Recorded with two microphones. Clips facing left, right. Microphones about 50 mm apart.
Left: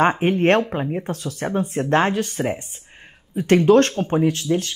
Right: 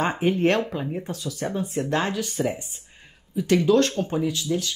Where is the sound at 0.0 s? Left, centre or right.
Left.